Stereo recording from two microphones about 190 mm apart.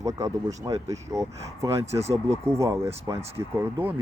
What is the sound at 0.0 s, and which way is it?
Speech, 15° right (ahead or behind).